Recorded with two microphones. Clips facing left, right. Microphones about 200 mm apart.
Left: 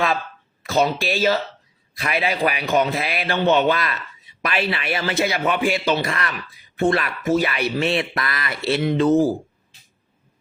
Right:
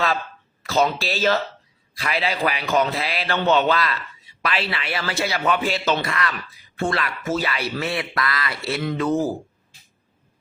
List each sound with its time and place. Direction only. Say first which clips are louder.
0.7 s speech: left 1 dB; 15° left (ahead or behind)
6.1 s speech: even; 25° left (ahead or behind)